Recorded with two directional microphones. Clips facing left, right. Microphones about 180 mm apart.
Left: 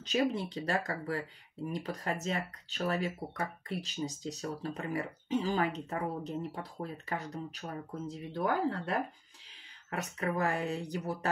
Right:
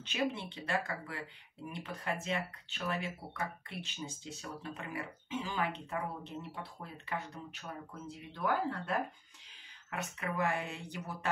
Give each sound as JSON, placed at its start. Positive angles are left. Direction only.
{"t": 0.0, "sound": "speech", "side_deg": 40}